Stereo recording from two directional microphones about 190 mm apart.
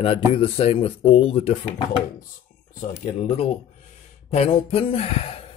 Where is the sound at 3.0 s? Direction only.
35° left (ahead or behind).